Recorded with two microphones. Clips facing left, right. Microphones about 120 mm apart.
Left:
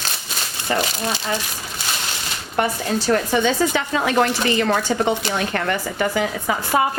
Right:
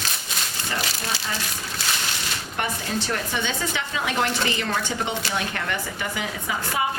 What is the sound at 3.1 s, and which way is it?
A woman's voice, 40° left (ahead or behind).